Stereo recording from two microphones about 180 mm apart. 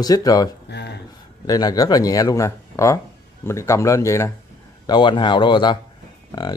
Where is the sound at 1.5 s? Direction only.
20° left (ahead or behind).